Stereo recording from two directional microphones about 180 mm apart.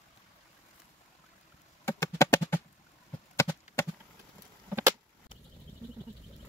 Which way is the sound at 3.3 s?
15° left (ahead or behind).